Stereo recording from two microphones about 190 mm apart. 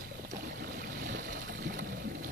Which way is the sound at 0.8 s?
50° right (ahead or behind).